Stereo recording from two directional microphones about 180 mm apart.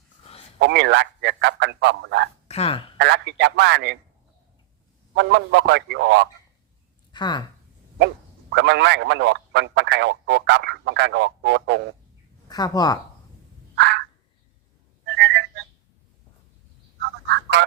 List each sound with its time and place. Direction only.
0.2 s a sound: 35° left (ahead or behind)
0.6 s a man's voice: 70° right (ahead or behind)
2.5 s speech: 35° left (ahead or behind)
3.0 s speech: 75° right (ahead or behind)
5.1 s speech: 75° right (ahead or behind)
7.1 s speech: 25° left (ahead or behind)
8.5 s speech: 75° right (ahead or behind)
12.5 s speech: 20° left (ahead or behind)
13.7 s frog: 70° right (ahead or behind)
15.0 s whistling: 70° right (ahead or behind)